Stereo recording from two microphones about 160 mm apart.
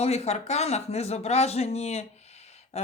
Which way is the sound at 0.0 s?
40° left (ahead or behind).